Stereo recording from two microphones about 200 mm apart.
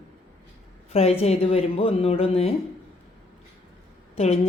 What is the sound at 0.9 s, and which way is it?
Speech, 30° left (ahead or behind).